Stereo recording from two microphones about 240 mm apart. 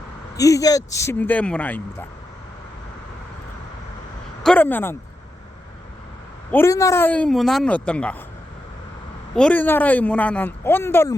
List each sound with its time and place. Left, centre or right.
0.3 s speech: centre
4.4 s speech: centre
6.5 s speech: centre
9.3 s speech: centre